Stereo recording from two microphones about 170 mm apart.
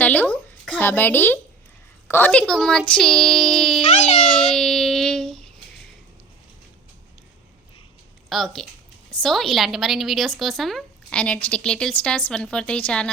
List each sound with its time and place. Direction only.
0.0 s a woman's voice: 10° left (ahead or behind)
3.8 s speech: 40° left (ahead or behind)
4.4 s a sound: centre (ahead or behind)
8.3 s a woman's voice: centre (ahead or behind)